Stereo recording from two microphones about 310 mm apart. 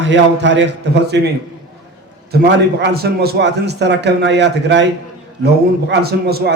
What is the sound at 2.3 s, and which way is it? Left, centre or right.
A man's voice, right.